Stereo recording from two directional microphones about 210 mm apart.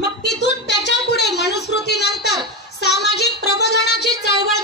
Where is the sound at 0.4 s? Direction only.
55° left (ahead or behind).